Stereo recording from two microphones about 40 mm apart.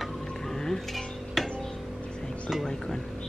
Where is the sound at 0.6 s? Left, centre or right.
Centre.